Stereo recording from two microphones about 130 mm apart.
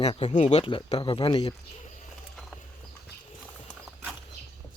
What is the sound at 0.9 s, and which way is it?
Speech, 40° left (ahead or behind).